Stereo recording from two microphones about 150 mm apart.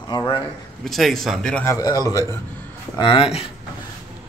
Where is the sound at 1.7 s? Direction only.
25° left (ahead or behind).